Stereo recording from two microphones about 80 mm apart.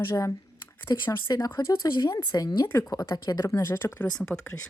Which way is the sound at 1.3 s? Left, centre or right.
Left.